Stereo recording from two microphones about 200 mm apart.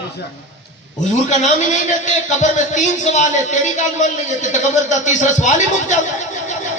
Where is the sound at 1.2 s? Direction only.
35° left (ahead or behind).